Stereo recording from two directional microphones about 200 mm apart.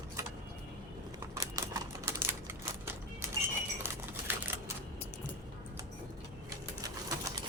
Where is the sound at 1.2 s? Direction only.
15° right (ahead or behind).